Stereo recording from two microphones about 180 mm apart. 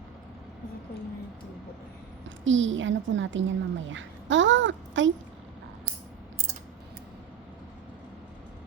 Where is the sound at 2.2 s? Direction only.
90° right.